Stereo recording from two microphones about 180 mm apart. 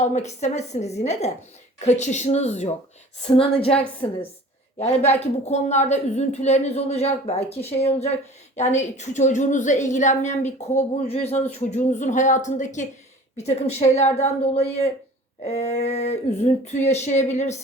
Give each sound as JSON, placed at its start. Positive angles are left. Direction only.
{"t": 0.0, "sound": "a woman's voice", "side_deg": 40}